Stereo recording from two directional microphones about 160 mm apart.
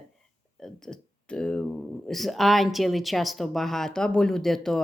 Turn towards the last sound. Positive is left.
turn(degrees=0)  # may be behind; listen again after turning